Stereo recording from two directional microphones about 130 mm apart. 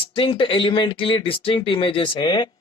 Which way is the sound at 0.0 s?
40° left (ahead or behind).